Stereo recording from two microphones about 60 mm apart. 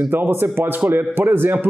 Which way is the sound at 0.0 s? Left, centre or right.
Right.